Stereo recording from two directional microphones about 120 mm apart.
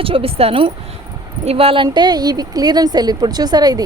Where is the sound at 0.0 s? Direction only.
50° right (ahead or behind).